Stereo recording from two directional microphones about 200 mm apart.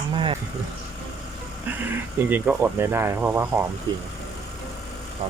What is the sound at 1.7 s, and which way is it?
Speech, 10° right (ahead or behind).